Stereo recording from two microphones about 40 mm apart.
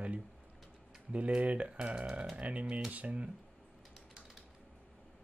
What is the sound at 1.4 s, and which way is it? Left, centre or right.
Speech, right.